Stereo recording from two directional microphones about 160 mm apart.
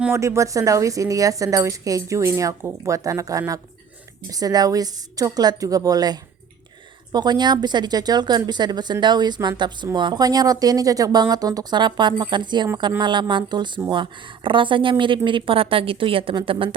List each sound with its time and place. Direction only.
0.0 s a woman's voice: 15° right (ahead or behind)